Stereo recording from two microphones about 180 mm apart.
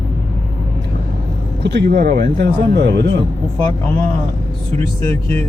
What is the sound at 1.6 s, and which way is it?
Speech, 65° right (ahead or behind).